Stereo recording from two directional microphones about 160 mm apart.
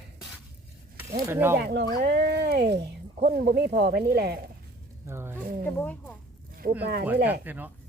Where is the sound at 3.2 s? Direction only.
65° right (ahead or behind); by 4.4 s 80° right.